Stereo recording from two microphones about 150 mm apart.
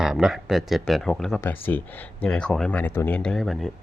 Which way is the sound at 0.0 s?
5° right (ahead or behind).